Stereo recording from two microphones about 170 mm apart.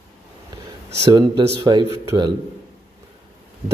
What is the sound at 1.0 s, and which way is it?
Speech, 20° right (ahead or behind).